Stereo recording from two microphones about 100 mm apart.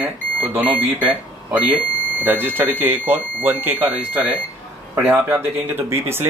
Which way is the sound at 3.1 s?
20° right (ahead or behind).